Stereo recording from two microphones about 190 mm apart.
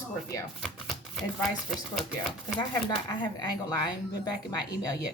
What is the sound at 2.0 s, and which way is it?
Speech, centre (ahead or behind).